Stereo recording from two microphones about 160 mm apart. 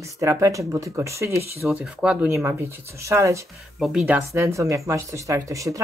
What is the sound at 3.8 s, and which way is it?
Speech, 5° right (ahead or behind).